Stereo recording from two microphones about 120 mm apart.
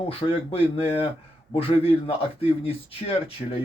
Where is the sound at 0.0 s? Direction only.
50° left (ahead or behind).